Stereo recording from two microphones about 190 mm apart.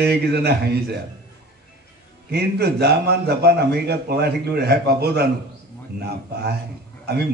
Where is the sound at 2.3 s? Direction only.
60° right (ahead or behind).